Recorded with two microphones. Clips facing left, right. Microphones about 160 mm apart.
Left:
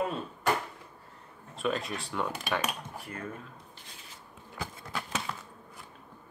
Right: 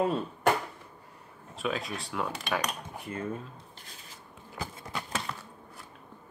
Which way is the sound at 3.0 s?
20° right (ahead or behind).